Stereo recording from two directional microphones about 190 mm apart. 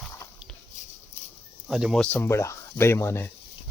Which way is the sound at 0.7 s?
40° left (ahead or behind).